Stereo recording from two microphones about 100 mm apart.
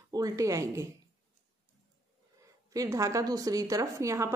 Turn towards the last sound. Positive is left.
turn(degrees=-30)  # may be behind; listen again after turning